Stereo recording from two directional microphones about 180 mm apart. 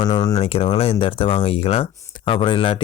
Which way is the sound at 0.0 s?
25° left (ahead or behind).